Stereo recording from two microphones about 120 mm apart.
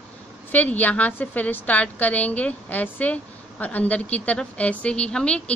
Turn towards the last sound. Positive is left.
turn(degrees=10)  # may be behind; listen again after turning